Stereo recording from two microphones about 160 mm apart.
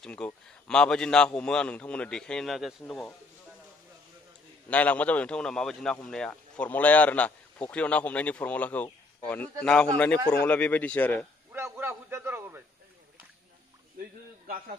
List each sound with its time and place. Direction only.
0.0 s a man's voice: 5° left (ahead or behind)
4.6 s speech: 10° left (ahead or behind)
11.5 s a sound: 15° right (ahead or behind)